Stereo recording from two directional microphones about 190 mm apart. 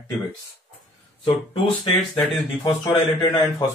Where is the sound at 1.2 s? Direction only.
30° left (ahead or behind).